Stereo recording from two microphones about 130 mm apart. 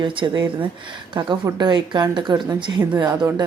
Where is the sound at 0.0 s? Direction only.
40° right (ahead or behind).